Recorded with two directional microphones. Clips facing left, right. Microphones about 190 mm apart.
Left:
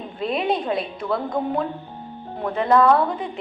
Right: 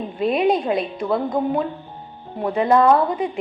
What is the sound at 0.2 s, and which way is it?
Speech, 5° right (ahead or behind).